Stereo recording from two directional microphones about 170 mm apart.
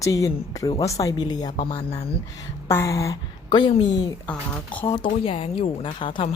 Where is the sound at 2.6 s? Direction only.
15° left (ahead or behind).